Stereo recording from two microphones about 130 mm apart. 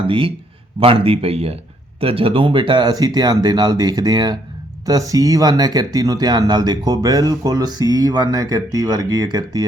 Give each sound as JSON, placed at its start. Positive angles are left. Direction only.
{"t": 0.1, "sound": "speech", "side_deg": -45}